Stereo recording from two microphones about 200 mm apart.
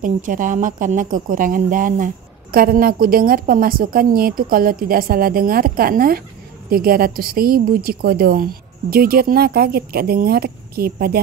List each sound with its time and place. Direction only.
0.0 s speech: 40° right (ahead or behind)